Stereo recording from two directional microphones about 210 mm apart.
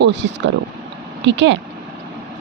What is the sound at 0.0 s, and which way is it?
A woman's voice, 60° right (ahead or behind).